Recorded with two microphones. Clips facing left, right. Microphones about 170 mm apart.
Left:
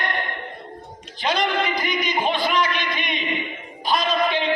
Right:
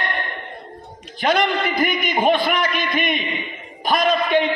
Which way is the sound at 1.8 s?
50° right (ahead or behind).